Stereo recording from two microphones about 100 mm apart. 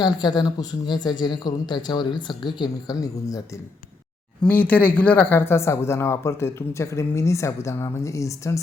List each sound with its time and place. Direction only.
0.0 s speech: 45° left (ahead or behind)
4.4 s speech: 15° left (ahead or behind)